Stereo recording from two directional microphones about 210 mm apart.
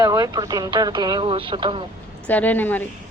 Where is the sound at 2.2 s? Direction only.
5° left (ahead or behind).